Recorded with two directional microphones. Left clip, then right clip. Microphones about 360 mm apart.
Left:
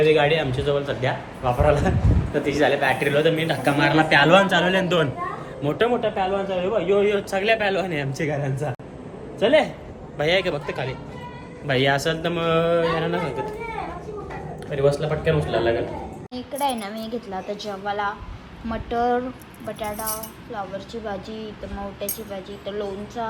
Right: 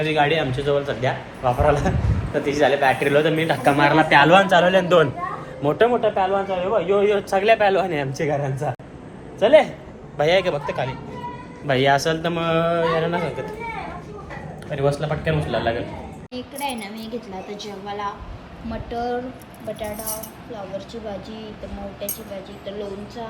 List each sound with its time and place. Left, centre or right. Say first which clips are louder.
0.0 s a man's voice: left 2 dB; centre
14.7 s a man's voice: left 1 dB; centre
18.7 s speech: left 4 dB; left